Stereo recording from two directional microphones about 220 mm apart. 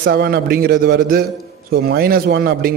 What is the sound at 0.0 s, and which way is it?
A man's voice, 45° right (ahead or behind).